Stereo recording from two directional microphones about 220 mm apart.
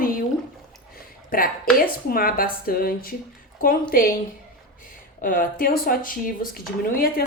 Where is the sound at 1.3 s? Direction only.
40° left (ahead or behind).